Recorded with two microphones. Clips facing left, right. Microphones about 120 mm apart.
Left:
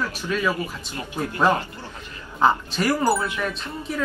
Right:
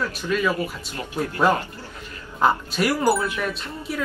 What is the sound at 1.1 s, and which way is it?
Speech, 20° left (ahead or behind).